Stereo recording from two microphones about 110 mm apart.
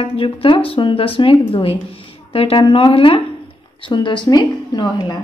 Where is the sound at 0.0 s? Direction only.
55° left (ahead or behind); by 5.1 s 40° left (ahead or behind).